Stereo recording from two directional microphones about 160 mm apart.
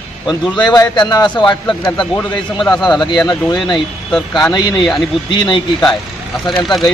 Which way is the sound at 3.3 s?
25° left (ahead or behind).